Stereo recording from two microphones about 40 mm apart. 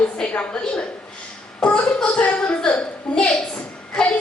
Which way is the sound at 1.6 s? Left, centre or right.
Left.